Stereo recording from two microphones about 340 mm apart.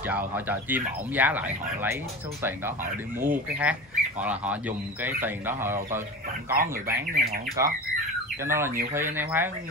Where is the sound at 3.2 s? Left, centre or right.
Centre.